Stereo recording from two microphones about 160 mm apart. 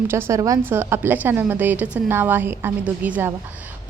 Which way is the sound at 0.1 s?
15° right (ahead or behind).